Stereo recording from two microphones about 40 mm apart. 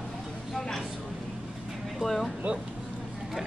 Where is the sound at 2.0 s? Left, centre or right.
Centre.